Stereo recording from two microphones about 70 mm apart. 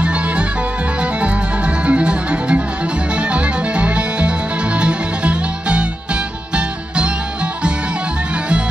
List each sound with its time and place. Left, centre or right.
1.9 s music: centre